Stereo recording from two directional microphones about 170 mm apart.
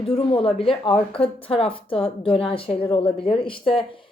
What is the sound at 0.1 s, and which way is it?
A woman's voice, 35° left (ahead or behind).